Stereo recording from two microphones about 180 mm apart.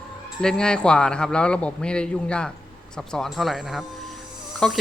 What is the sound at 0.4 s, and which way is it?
A man's voice, 5° left (ahead or behind).